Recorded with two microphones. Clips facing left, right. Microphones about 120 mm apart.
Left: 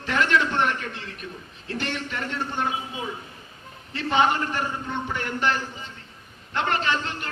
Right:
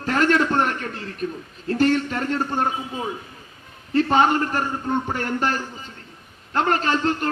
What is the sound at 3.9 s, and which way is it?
A man's voice, 40° right (ahead or behind).